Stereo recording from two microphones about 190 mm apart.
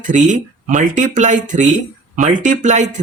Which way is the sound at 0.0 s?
40° right (ahead or behind).